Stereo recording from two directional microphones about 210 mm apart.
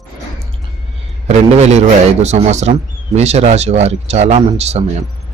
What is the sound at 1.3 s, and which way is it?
A man's voice, 30° right (ahead or behind).